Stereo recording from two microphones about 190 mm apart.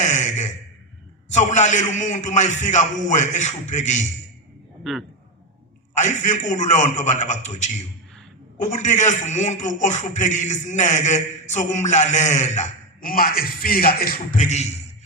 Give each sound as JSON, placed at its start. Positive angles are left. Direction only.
{"t": 0.0, "sound": "a sound", "side_deg": 40}
{"t": 1.3, "sound": "a man's voice", "side_deg": 40}
{"t": 4.8, "sound": "a man's voice", "side_deg": 0}
{"t": 5.9, "sound": "a man's voice", "side_deg": 40}